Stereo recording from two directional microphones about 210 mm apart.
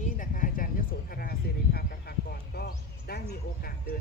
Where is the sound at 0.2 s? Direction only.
40° left (ahead or behind).